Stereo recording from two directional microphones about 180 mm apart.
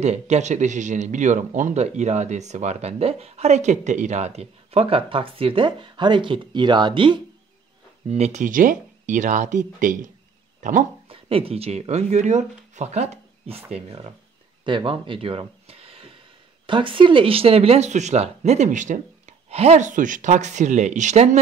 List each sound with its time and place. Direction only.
0.0 s speech: 40° right (ahead or behind)
8.1 s speech: 40° right (ahead or behind)
11.1 s speech: 30° right (ahead or behind)
14.6 s a sound: 25° right (ahead or behind)
16.6 s speech: 30° right (ahead or behind)